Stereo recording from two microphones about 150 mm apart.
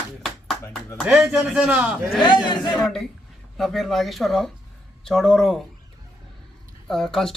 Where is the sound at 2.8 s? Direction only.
Centre (ahead or behind).